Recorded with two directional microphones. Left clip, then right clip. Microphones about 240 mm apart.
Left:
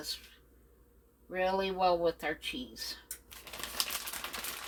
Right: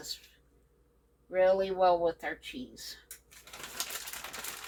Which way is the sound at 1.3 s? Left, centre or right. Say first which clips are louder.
Right 5 dB; left.